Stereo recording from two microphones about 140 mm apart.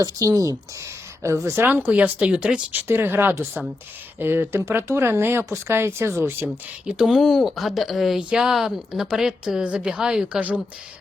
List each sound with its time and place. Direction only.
0.0 s speech: 25° right (ahead or behind); by 10.6 s 5° right (ahead or behind)